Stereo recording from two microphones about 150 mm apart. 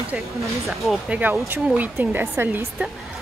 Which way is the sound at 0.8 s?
Centre (ahead or behind).